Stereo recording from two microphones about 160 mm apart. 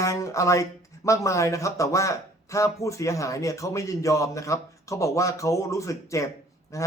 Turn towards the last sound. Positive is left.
turn(degrees=20)  # may be behind; listen again after turning